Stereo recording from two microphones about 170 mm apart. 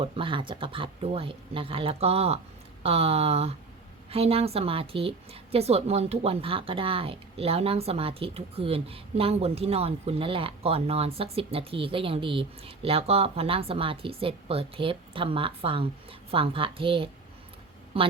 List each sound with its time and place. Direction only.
0.0 s a woman's voice: 30° right (ahead or behind)